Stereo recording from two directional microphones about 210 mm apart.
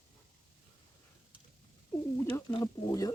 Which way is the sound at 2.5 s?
20° left (ahead or behind).